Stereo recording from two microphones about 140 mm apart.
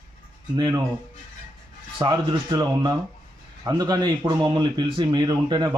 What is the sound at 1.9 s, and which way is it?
Speech, 30° right (ahead or behind).